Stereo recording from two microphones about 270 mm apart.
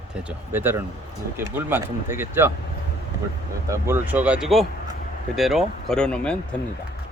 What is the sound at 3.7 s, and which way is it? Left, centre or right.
Speech, centre.